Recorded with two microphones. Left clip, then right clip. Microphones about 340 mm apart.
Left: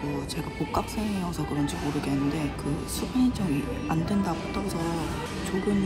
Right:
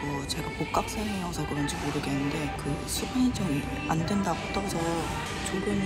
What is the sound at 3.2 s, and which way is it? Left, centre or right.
Speech, centre.